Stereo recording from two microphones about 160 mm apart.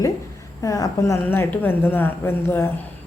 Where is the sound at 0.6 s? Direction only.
20° left (ahead or behind).